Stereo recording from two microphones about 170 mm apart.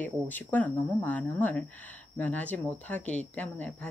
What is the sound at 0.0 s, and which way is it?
Speech, 10° left (ahead or behind).